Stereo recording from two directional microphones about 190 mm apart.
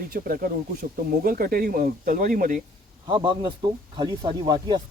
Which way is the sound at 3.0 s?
25° right (ahead or behind).